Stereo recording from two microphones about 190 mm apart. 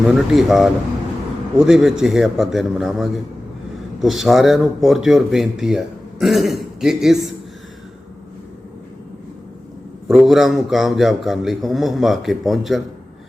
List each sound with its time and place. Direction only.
0.1 s speech: centre (ahead or behind)
10.1 s speech: centre (ahead or behind)